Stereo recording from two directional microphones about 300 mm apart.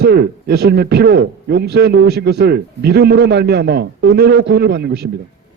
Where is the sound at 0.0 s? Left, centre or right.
Right.